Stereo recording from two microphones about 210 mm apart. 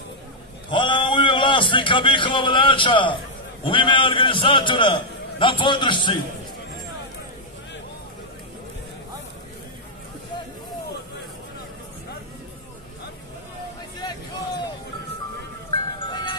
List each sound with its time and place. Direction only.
0.7 s a man's voice: 25° left (ahead or behind)
16.0 s music: 20° left (ahead or behind)